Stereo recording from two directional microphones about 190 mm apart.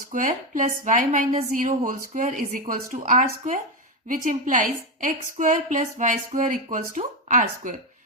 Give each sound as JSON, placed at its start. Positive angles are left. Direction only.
{"t": 0.1, "sound": "a woman's voice", "side_deg": -45}